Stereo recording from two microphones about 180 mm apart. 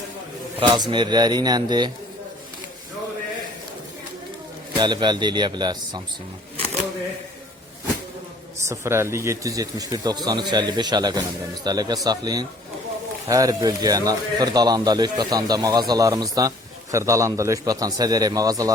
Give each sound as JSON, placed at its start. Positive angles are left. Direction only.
{"t": 0.6, "sound": "speech", "side_deg": -25}
{"t": 4.8, "sound": "speech", "side_deg": -25}
{"t": 8.7, "sound": "speech", "side_deg": -15}